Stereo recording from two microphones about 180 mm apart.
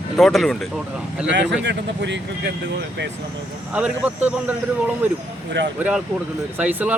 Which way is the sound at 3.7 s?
5° right (ahead or behind).